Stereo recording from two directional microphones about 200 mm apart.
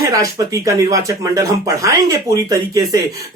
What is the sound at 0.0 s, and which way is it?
Speech, 15° right (ahead or behind).